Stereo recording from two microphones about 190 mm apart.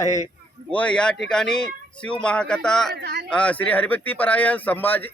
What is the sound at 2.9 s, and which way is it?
Speech, 60° right (ahead or behind).